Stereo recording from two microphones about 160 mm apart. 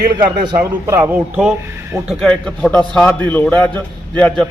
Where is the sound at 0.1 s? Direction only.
30° right (ahead or behind).